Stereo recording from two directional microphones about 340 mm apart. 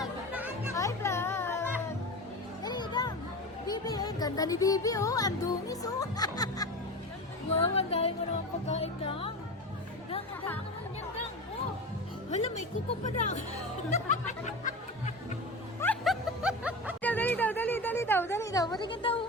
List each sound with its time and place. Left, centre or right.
0.0 s music: centre
0.8 s music: centre
7.5 s speech: centre
13.1 s speech: left
14.1 s music: left
15.8 s snicker: centre